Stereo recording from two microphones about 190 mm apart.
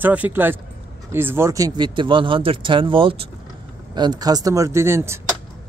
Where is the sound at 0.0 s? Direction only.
10° right (ahead or behind).